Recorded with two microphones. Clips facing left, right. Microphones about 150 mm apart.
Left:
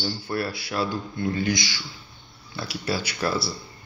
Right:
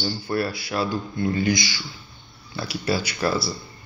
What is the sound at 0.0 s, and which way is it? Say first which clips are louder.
Speech: right 3 dB; centre (ahead or behind).